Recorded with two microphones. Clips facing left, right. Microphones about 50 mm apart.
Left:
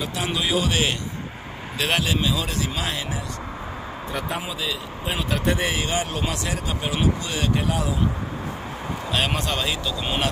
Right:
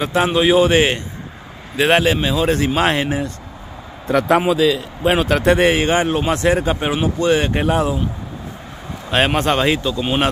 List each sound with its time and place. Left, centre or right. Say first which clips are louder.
0.0 s speech: right 10 dB; right
4.1 s speech: right 14 dB; right
4.5 s a man's voice: right 13 dB; right
5.7 s speech: right 10 dB; right
9.1 s speech: right 9 dB; right
10.0 s speech: right 6 dB; right